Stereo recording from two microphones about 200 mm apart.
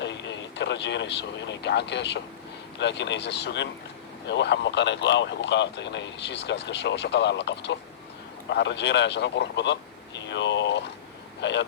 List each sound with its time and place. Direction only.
0.0 s speech: 60° left (ahead or behind)
10.2 s a sound: 65° left (ahead or behind)
11.3 s vehicle: 60° left (ahead or behind)